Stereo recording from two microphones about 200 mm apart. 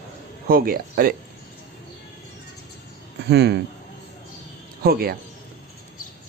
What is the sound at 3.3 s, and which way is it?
Speech, 55° right (ahead or behind).